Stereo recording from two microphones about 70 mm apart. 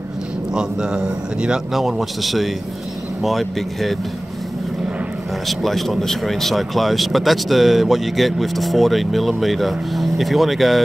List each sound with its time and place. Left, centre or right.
0.6 s speech: centre
5.5 s speech: centre